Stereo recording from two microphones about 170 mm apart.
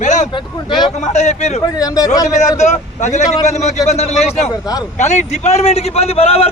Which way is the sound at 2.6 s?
45° left (ahead or behind).